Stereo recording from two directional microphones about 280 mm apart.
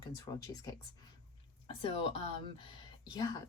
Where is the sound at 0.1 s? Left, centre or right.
Centre.